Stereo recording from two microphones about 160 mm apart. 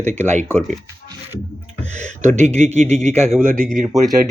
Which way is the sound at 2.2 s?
45° right (ahead or behind).